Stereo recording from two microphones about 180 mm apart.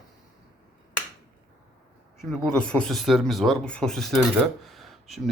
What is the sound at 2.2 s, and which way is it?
Speech, centre (ahead or behind).